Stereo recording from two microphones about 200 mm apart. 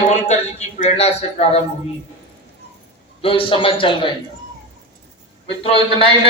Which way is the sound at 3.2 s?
25° left (ahead or behind).